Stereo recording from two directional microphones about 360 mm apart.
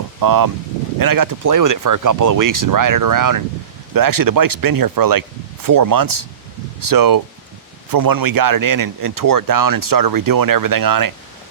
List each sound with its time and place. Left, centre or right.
0.2 s speech: right